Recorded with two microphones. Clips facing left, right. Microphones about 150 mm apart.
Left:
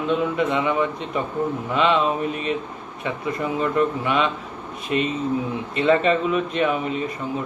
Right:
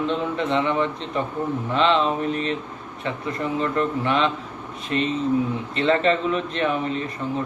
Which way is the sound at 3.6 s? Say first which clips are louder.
Left 3 dB; 15° left (ahead or behind).